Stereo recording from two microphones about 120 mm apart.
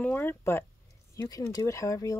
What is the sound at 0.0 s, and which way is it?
Speech, 15° left (ahead or behind).